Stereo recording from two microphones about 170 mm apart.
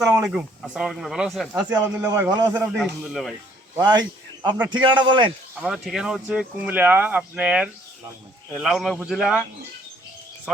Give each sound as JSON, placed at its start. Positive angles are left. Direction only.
{"t": 0.0, "sound": "speech", "side_deg": -15}
{"t": 0.3, "sound": "speech", "side_deg": -5}
{"t": 2.0, "sound": "a man's voice", "side_deg": -20}
{"t": 2.7, "sound": "speech", "side_deg": 0}
{"t": 3.8, "sound": "a man's voice", "side_deg": -25}
{"t": 5.5, "sound": "speech", "side_deg": -5}